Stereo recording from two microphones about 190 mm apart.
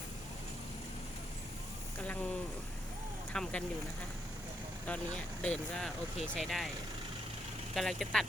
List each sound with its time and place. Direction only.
2.0 s a sound: 5° left (ahead or behind)
3.3 s speech: 5° left (ahead or behind)
4.9 s speech: 5° left (ahead or behind)
7.8 s speech: centre (ahead or behind)